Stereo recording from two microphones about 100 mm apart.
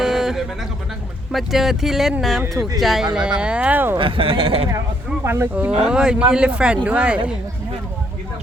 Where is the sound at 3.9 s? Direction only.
60° right (ahead or behind).